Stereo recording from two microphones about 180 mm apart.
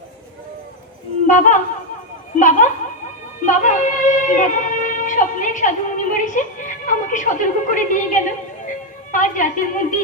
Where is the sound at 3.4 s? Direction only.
45° left (ahead or behind).